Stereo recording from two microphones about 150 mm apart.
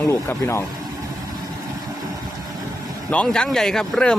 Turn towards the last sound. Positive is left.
turn(degrees=5)  # may be behind; listen again after turning